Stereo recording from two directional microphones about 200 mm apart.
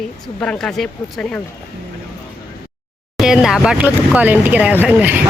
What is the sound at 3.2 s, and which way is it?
Speech, centre (ahead or behind).